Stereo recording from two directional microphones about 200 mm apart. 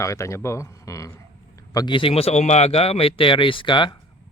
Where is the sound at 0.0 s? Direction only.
15° left (ahead or behind).